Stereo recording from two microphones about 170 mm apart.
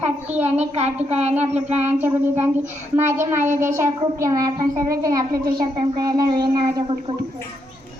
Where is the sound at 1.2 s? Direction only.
40° right (ahead or behind).